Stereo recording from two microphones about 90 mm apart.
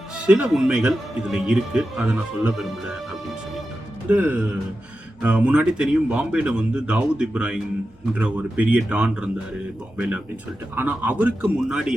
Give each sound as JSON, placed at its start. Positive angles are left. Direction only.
{"t": 0.3, "sound": "speech", "side_deg": -10}
{"t": 4.1, "sound": "speech", "side_deg": -15}
{"t": 10.8, "sound": "speech", "side_deg": -15}